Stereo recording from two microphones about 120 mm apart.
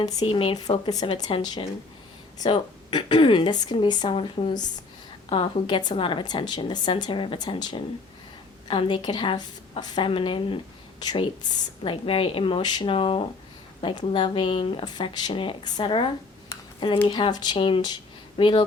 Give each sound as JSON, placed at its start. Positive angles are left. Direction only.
{"t": 0.0, "sound": "speech", "side_deg": 35}
{"t": 0.3, "sound": "a woman's voice", "side_deg": 45}
{"t": 11.0, "sound": "speech", "side_deg": 35}
{"t": 11.8, "sound": "a woman's voice", "side_deg": 50}
{"t": 17.1, "sound": "speech", "side_deg": 40}